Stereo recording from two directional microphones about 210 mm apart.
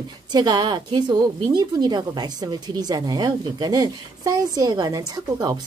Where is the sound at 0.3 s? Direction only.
20° right (ahead or behind).